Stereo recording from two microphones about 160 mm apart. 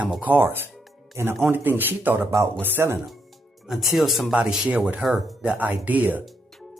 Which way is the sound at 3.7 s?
Centre (ahead or behind).